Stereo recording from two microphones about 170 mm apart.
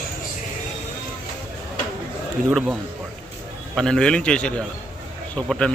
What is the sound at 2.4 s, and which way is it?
Speech, centre (ahead or behind).